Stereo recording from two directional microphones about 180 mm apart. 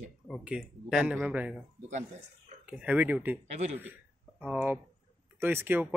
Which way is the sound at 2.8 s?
10° right (ahead or behind).